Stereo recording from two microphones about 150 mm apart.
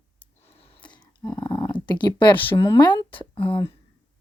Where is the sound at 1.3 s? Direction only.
25° left (ahead or behind).